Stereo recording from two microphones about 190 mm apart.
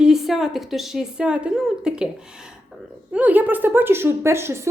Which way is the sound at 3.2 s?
10° right (ahead or behind).